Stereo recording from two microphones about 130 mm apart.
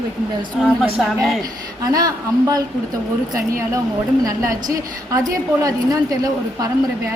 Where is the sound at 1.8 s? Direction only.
30° right (ahead or behind).